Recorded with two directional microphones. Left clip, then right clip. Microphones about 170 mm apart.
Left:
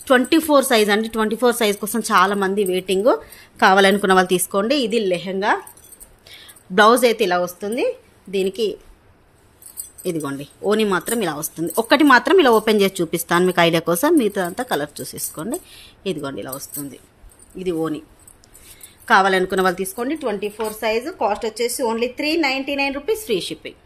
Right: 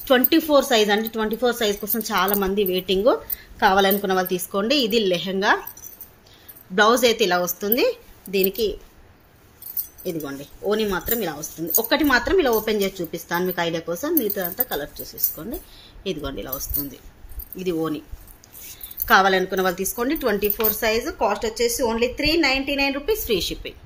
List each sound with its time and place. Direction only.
0.0 s speech: 25° left (ahead or behind); by 4.5 s 45° left (ahead or behind)
4.5 s a woman's voice: 25° left (ahead or behind)
6.2 s a woman's voice: 35° left (ahead or behind); by 8.5 s 15° left (ahead or behind)
10.2 s a woman's voice: 40° left (ahead or behind); by 18.0 s 20° left (ahead or behind)
19.0 s a woman's voice: 25° left (ahead or behind)
19.8 s a woman's voice: 15° left (ahead or behind)
20.2 s speech: centre (ahead or behind)
20.8 s a woman's voice: 15° left (ahead or behind)